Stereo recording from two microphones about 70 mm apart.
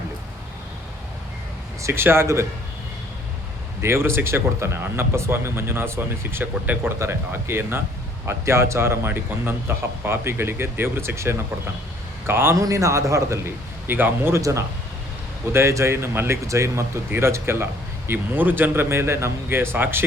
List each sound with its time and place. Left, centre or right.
1.8 s speech: right
3.8 s speech: right
12.5 s a man's voice: right
14.3 s a man's voice: right